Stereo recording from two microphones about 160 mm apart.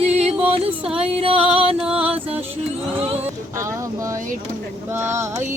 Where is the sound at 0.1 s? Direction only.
40° right (ahead or behind).